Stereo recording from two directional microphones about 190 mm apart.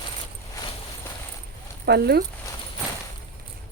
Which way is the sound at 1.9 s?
60° right (ahead or behind).